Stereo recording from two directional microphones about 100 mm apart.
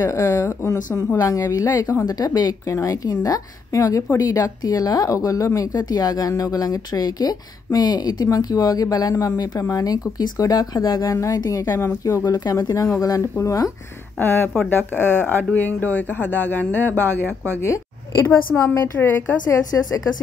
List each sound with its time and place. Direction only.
0.0 s speech: 30° left (ahead or behind)
11.6 s speech: 25° left (ahead or behind)
14.2 s speech: 20° left (ahead or behind)
17.6 s a woman's voice: 30° left (ahead or behind)
18.7 s speech: 20° left (ahead or behind)